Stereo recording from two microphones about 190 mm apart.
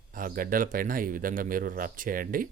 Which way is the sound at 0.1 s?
45° right (ahead or behind).